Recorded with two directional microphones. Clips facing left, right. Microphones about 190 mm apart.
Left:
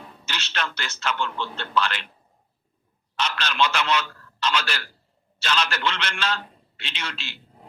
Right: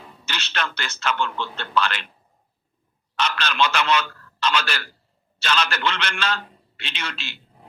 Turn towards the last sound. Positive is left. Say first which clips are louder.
# right 2 dB
turn(degrees=-60)  # may be behind; listen again after turning